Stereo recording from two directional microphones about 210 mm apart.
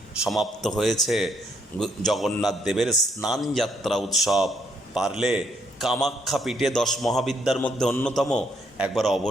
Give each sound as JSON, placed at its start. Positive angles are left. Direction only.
{"t": 0.2, "sound": "a man's voice", "side_deg": 0}